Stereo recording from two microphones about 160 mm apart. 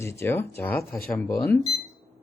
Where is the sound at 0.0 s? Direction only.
15° left (ahead or behind).